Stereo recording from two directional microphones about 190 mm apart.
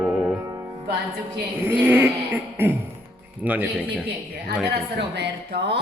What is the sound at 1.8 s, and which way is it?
Speech, 10° right (ahead or behind).